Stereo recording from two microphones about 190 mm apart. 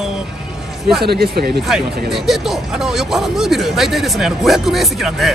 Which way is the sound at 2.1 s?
Centre (ahead or behind).